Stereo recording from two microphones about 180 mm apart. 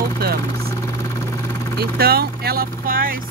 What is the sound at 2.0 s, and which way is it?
Speech, 60° right (ahead or behind).